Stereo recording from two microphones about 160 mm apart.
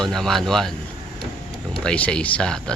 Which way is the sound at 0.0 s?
Centre (ahead or behind).